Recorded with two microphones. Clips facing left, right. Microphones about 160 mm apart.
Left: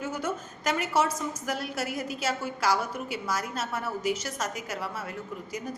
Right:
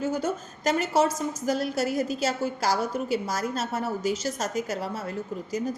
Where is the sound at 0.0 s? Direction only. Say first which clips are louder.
Right 4 dB; 30° right (ahead or behind).